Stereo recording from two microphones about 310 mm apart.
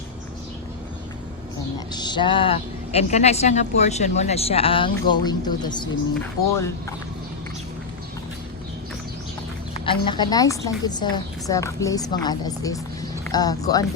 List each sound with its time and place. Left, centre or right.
1.9 s a woman's voice: centre
9.8 s a woman's voice: centre